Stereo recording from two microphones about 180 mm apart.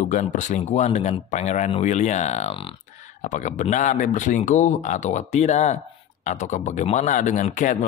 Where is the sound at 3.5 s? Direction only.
40° left (ahead or behind).